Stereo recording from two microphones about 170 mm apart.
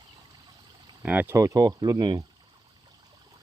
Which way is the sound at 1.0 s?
10° right (ahead or behind).